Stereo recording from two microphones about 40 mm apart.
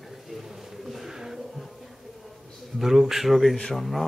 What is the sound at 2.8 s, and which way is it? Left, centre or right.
Speech, centre.